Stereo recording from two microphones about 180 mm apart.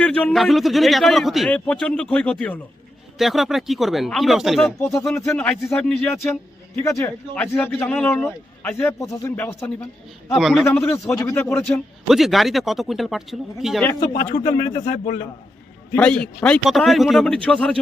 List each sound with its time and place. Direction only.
0.0 s a man's voice: 5° left (ahead or behind)
5.1 s a man's voice: 15° left (ahead or behind)
12.0 s a man's voice: centre (ahead or behind)
14.0 s a man's voice: 25° left (ahead or behind)
14.7 s a man's voice: 35° left (ahead or behind)
16.0 s a man's voice: 5° left (ahead or behind)